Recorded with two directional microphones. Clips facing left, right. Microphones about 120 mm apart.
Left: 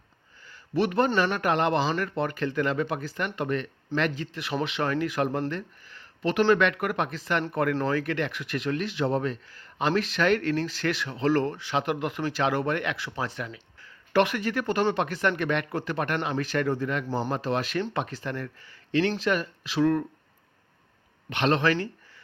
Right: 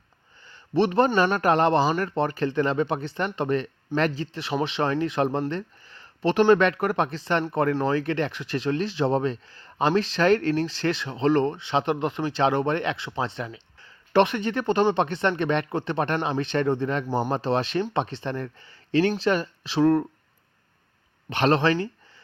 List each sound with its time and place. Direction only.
0.4 s a man's voice: 25° right (ahead or behind)
5.5 s a sound: 30° right (ahead or behind)
6.5 s speech: 35° right (ahead or behind)
21.2 s speech: 35° right (ahead or behind)